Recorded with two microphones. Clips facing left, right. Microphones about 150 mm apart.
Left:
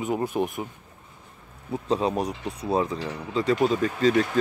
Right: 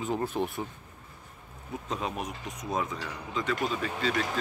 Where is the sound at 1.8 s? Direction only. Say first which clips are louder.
Left 10 dB; 35° left (ahead or behind).